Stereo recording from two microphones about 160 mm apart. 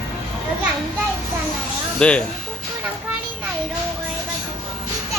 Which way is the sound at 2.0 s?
5° left (ahead or behind).